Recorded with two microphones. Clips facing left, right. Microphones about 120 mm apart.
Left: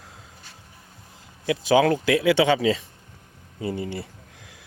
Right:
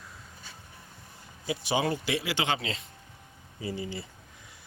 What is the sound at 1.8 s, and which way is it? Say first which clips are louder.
Speech: left 10 dB; 90° left.